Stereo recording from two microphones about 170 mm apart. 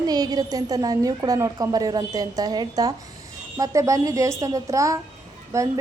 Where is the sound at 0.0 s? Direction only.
20° right (ahead or behind).